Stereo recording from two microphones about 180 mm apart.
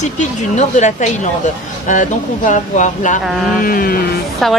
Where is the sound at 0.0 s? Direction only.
40° left (ahead or behind).